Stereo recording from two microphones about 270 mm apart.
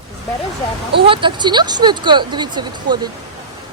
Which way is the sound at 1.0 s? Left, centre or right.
Centre.